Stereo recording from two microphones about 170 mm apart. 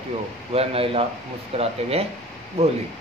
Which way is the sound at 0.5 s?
35° right (ahead or behind).